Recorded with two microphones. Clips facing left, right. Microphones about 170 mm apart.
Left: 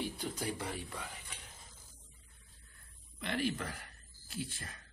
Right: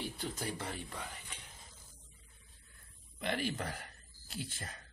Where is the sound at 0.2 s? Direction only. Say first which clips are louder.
Left 1 dB; 15° left (ahead or behind).